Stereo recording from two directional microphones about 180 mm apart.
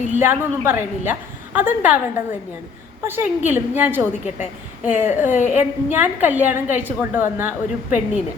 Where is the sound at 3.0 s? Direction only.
10° right (ahead or behind).